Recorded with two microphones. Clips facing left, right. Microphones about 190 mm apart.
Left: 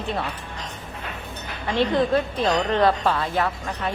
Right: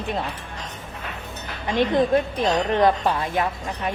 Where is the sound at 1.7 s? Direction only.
15° right (ahead or behind).